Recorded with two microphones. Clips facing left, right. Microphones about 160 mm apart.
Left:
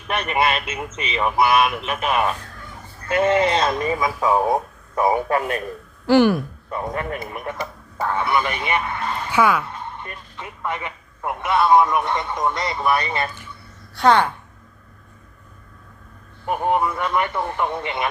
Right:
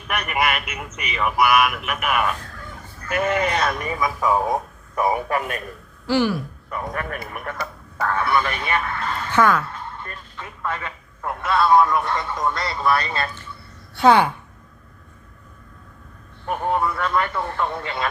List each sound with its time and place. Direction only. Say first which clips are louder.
0.1 s speech: left 2 dB; 25° left (ahead or behind)
6.1 s speech: left 5 dB; 55° left (ahead or behind)
6.7 s speech: left 2 dB; 25° left (ahead or behind)
13.9 s a woman's voice: right 1 dB; 5° right (ahead or behind)
16.5 s speech: left 2 dB; 20° left (ahead or behind)